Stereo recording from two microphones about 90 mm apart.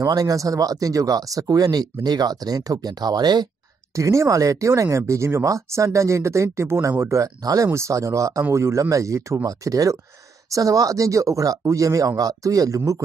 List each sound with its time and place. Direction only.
0.0 s speech: 40° right (ahead or behind)
3.9 s speech: 35° right (ahead or behind)